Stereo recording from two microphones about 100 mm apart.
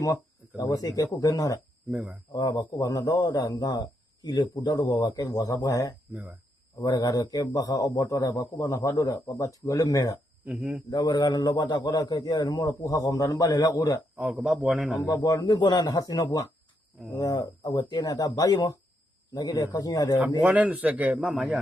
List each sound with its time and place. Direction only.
0.0 s a man's voice: 35° left (ahead or behind)
1.9 s a man's voice: 10° right (ahead or behind)
2.3 s a man's voice: 40° left (ahead or behind)
6.1 s a man's voice: 5° right (ahead or behind)
6.8 s a man's voice: 40° left (ahead or behind)
10.4 s a man's voice: 10° right (ahead or behind)
10.9 s a man's voice: 45° left (ahead or behind)
14.2 s a man's voice: 15° right (ahead or behind)
14.4 s a man's voice: centre (ahead or behind)
15.0 s a man's voice: 35° left (ahead or behind)
20.4 s a man's voice: 15° right (ahead or behind)